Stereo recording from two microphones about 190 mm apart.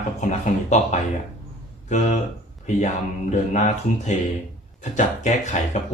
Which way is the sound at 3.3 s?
40° left (ahead or behind).